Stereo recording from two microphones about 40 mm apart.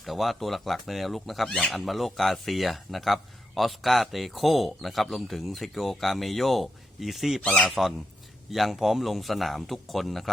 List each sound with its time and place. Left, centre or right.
0.0 s a man's voice: centre
1.5 s a man's voice: centre
7.4 s speech: left
8.4 s a man's voice: centre